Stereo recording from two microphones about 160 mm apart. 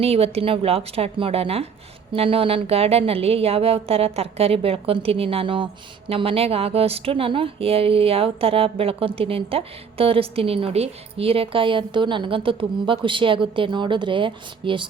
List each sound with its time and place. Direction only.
0.0 s a woman's voice: 40° right (ahead or behind)